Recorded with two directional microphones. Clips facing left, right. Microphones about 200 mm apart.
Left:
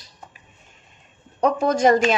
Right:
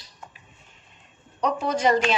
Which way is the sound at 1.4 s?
45° left (ahead or behind).